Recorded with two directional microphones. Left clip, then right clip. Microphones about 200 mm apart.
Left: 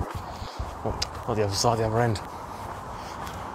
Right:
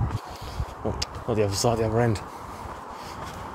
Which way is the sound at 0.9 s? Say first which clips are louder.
Right 2 dB; 50° right (ahead or behind).